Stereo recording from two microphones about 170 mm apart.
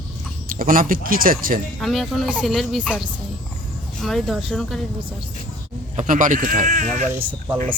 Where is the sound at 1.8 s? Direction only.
Centre (ahead or behind).